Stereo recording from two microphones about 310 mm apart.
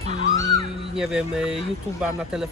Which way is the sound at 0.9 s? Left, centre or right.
Centre.